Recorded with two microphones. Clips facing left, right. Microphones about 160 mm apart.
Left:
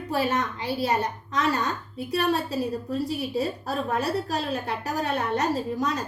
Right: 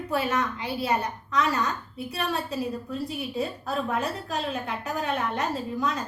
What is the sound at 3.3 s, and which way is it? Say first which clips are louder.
A woman's voice: right 1 dB; 35° left (ahead or behind).